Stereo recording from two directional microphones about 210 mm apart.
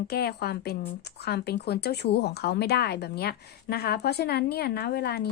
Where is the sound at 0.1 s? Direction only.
50° left (ahead or behind).